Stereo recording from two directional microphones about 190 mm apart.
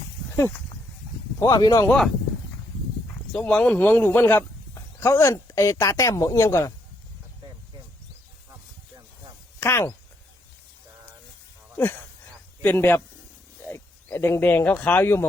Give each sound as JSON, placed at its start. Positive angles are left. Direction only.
{"t": 0.3, "sound": "speech", "side_deg": 10}
{"t": 1.9, "sound": "speech", "side_deg": 0}
{"t": 3.3, "sound": "a man's voice", "side_deg": 5}
{"t": 7.4, "sound": "a sound", "side_deg": -25}
{"t": 9.6, "sound": "speech", "side_deg": 10}
{"t": 12.6, "sound": "a man's voice", "side_deg": 10}